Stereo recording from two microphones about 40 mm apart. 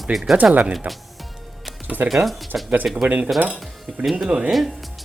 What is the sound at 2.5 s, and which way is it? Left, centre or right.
Speech, right.